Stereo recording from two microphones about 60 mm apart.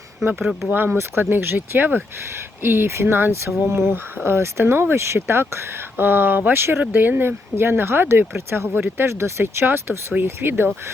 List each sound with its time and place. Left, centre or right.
0.3 s speech: centre
0.7 s speech: right